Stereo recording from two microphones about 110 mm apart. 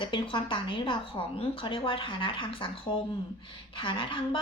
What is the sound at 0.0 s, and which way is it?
A woman's voice, 50° left (ahead or behind).